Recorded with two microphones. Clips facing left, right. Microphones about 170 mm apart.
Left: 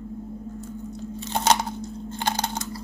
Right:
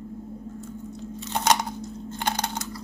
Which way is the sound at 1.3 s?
30° left (ahead or behind).